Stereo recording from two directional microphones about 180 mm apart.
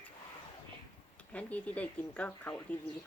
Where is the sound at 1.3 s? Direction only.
10° left (ahead or behind).